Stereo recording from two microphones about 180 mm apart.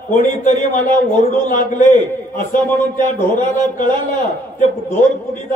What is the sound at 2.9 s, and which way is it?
Speech, 10° left (ahead or behind).